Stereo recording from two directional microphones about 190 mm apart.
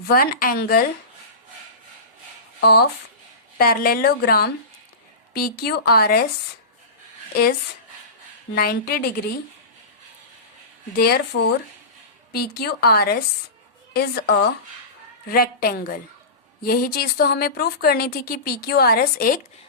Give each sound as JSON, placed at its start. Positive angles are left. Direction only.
{"t": 0.1, "sound": "speech", "side_deg": 50}
{"t": 2.6, "sound": "speech", "side_deg": 55}
{"t": 8.5, "sound": "speech", "side_deg": 55}
{"t": 10.9, "sound": "speech", "side_deg": 55}
{"t": 12.3, "sound": "speech", "side_deg": 55}